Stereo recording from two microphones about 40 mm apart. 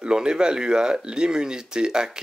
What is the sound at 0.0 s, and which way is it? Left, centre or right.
Speech, right.